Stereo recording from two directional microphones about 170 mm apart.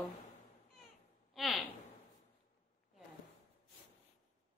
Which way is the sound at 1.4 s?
Centre (ahead or behind).